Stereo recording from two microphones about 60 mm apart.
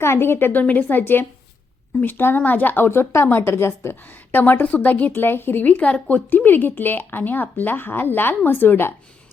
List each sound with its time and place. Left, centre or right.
0.0 s a woman's voice: left
0.6 s a woman's voice: left